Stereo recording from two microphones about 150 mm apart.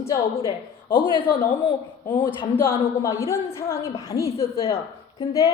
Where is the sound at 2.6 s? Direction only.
20° left (ahead or behind).